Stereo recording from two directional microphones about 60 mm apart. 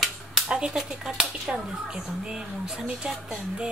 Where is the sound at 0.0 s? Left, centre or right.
Centre.